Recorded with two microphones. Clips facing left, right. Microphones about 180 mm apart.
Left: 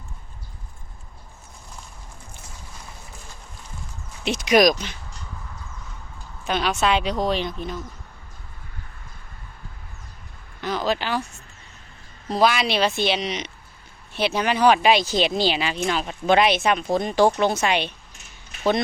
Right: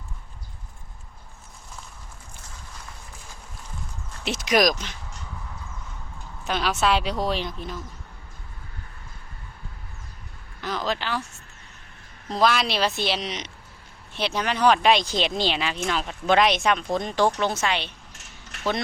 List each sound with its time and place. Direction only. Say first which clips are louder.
4.2 s speech: left 4 dB; centre (ahead or behind)
6.5 s speech: left 1 dB; 5° right (ahead or behind)
10.6 s speech: left 4 dB; 5° left (ahead or behind)
12.3 s speech: left 2 dB; 5° left (ahead or behind)
18.1 s a sound: right 2 dB; 90° right